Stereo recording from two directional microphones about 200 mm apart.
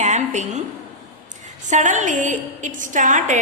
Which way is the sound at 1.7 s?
40° right (ahead or behind).